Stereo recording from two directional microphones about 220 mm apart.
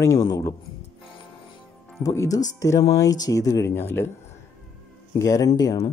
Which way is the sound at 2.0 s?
15° left (ahead or behind).